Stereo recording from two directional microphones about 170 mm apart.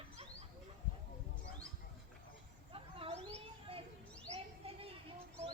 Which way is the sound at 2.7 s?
35° right (ahead or behind).